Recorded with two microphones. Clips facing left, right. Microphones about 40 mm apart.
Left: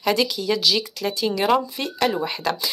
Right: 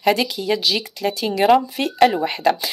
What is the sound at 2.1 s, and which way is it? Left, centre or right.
Speech, right.